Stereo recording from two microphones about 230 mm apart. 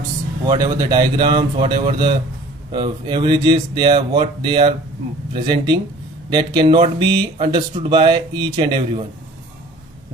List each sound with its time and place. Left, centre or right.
0.4 s speech: centre